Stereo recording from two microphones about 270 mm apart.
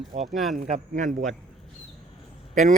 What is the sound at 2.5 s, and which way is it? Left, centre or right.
Speech, right.